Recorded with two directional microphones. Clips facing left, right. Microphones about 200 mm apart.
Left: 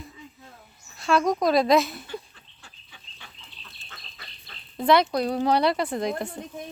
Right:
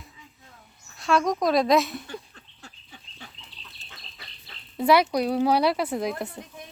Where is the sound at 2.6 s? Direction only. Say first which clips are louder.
Right 6 dB; 40° right (ahead or behind).